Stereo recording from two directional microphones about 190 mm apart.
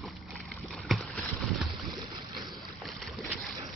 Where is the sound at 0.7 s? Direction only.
Centre (ahead or behind).